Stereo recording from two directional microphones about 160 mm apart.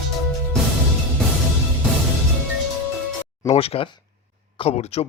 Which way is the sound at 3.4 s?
40° left (ahead or behind).